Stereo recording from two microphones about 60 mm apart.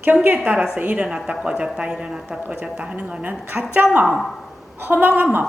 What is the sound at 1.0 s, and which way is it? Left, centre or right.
Speech, centre.